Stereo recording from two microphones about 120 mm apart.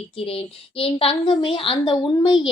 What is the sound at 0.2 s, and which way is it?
A woman's voice, 50° left (ahead or behind).